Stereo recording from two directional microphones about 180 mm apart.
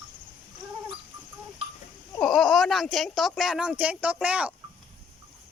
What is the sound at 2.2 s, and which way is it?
Speech, centre (ahead or behind).